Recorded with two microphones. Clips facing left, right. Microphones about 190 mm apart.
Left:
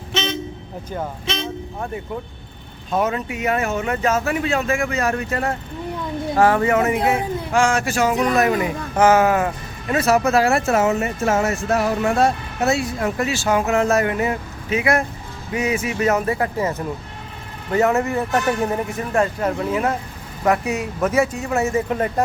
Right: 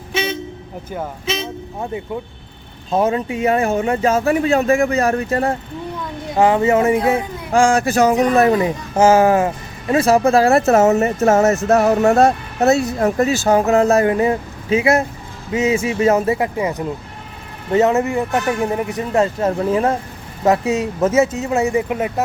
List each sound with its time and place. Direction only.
0.1 s vehicle: 10° right (ahead or behind)
0.9 s speech: 5° right (ahead or behind)
2.9 s speech: 30° right (ahead or behind)
6.3 s speech: 20° right (ahead or behind)